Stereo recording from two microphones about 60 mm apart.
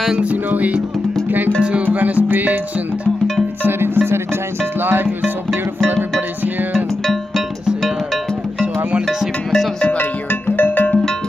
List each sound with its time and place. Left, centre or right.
0.1 s music: right
3.6 s music: right
9.5 s music: centre
10.5 s music: left